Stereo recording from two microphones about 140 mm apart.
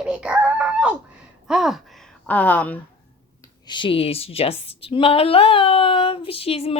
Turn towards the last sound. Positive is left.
turn(degrees=45)  # may be behind; listen again after turning